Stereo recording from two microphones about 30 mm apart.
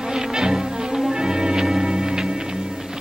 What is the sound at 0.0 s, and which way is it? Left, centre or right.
Music, centre.